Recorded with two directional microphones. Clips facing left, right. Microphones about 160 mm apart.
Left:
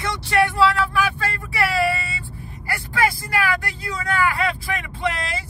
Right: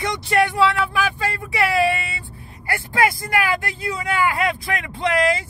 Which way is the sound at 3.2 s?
20° right (ahead or behind).